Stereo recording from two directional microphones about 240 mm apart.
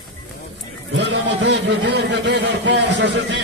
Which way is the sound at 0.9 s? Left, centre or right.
Right.